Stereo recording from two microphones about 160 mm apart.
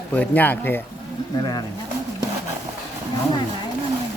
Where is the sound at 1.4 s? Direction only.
25° left (ahead or behind).